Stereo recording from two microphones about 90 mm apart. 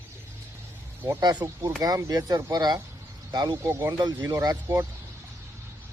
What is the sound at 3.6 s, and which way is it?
Speech, 30° right (ahead or behind).